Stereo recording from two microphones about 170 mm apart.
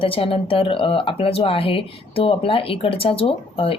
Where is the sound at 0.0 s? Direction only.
35° left (ahead or behind).